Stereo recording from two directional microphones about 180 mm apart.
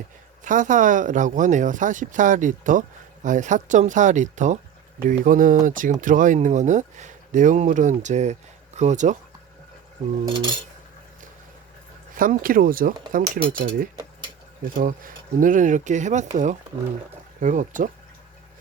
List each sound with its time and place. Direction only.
0.4 s speech: 45° right (ahead or behind)
10.2 s cutlery: 25° right (ahead or behind)
12.1 s speech: 50° right (ahead or behind)
14.8 s speech: 50° right (ahead or behind)